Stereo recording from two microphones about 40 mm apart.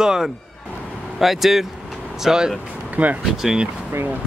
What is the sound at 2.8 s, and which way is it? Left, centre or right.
Speech, right.